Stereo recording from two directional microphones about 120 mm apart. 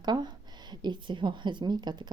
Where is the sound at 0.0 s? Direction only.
35° right (ahead or behind).